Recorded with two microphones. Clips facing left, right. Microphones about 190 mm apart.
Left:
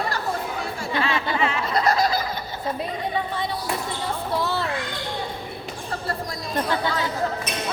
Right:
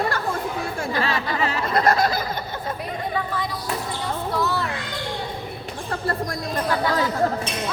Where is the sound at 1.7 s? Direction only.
50° right (ahead or behind).